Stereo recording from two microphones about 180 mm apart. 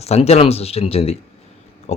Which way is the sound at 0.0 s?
35° left (ahead or behind).